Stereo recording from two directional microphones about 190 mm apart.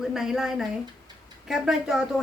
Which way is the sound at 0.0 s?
Centre (ahead or behind).